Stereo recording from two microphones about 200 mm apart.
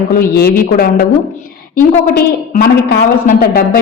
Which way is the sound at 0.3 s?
50° left (ahead or behind).